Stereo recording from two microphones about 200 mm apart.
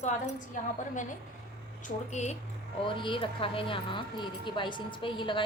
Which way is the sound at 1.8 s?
35° left (ahead or behind).